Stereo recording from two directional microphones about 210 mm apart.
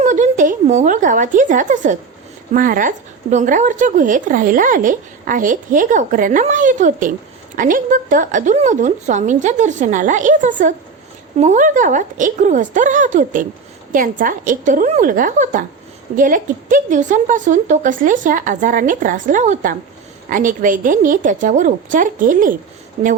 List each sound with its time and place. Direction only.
0.0 s a woman's voice: 35° right (ahead or behind)